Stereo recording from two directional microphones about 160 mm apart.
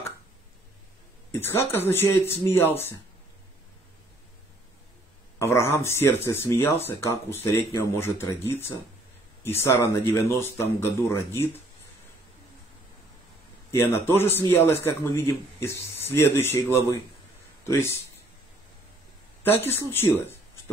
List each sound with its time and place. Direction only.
1.3 s speech: 15° left (ahead or behind)
5.4 s speech: 15° left (ahead or behind)
13.7 s speech: 15° left (ahead or behind)
19.4 s speech: 15° left (ahead or behind)